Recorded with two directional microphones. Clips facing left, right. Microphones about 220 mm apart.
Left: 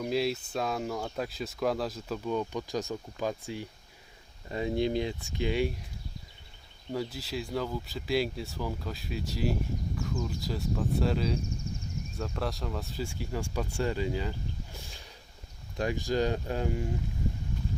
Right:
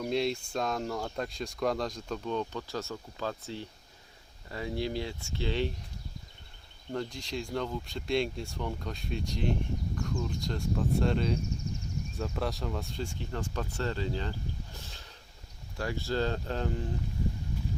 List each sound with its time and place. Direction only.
0.0 s speech: 5° left (ahead or behind)
6.9 s speech: 5° left (ahead or behind)